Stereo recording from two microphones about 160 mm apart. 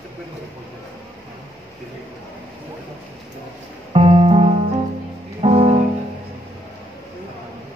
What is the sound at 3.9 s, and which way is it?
Music, 40° right (ahead or behind).